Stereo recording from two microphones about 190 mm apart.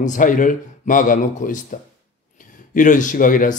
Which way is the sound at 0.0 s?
45° left (ahead or behind).